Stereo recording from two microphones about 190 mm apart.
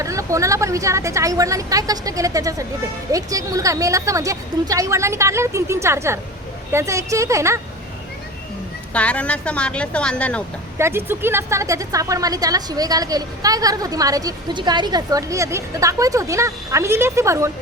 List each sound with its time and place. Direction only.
0.0 s a woman's voice: 15° right (ahead or behind)
8.9 s a woman's voice: 5° left (ahead or behind)
10.8 s a woman's voice: 15° right (ahead or behind)